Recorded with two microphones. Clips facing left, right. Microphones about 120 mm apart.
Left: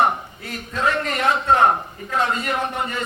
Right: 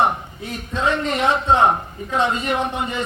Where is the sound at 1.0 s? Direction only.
15° right (ahead or behind).